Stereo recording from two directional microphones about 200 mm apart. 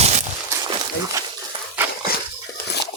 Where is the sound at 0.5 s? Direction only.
20° right (ahead or behind).